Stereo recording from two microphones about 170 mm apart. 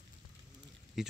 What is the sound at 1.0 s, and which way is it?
Speech, centre (ahead or behind).